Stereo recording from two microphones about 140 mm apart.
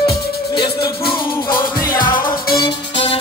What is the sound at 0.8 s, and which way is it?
Music, 35° left (ahead or behind).